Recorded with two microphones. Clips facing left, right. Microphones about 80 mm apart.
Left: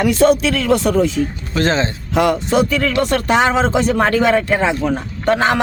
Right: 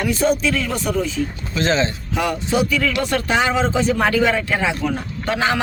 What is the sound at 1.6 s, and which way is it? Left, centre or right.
Speech, left.